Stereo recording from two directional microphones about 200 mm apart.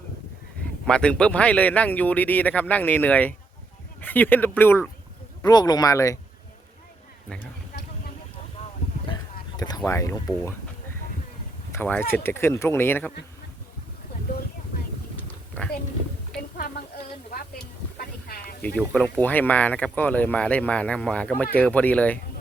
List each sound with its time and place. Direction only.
0.6 s speech: 5° left (ahead or behind)
9.6 s speech: 20° left (ahead or behind)
11.7 s speech: 10° left (ahead or behind)
15.1 s a sound: 5° left (ahead or behind)
17.9 s music: 50° left (ahead or behind)
18.6 s speech: 5° left (ahead or behind)